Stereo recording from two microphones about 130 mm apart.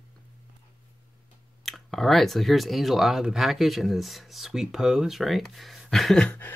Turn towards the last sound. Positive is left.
turn(degrees=10)  # may be behind; listen again after turning